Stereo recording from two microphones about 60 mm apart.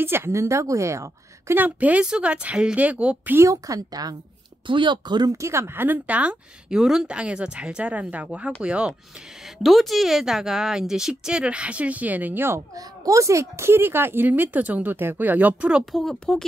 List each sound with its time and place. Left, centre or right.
0.0 s a woman's voice: right
1.5 s speech: right
3.4 s a woman's voice: right
5.2 s speech: right
5.5 s speech: right
6.7 s speech: centre
7.1 s a woman's voice: centre
9.4 s a woman's voice: centre; by 12.5 s right
12.5 s speech: right
15.8 s speech: centre